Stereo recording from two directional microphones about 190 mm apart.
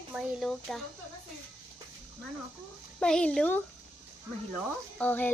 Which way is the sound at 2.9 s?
5° left (ahead or behind).